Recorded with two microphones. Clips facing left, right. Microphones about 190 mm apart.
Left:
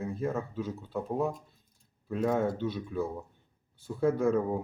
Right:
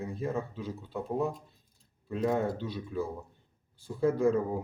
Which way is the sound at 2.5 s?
60° left (ahead or behind).